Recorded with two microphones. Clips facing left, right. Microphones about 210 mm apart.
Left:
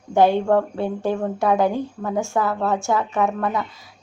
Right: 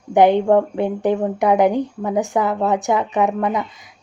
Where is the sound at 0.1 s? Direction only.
15° right (ahead or behind).